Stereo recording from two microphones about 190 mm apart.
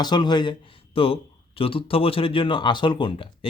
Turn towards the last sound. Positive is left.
turn(degrees=25)  # may be behind; listen again after turning